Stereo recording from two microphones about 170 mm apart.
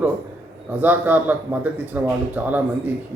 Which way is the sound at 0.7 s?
10° right (ahead or behind).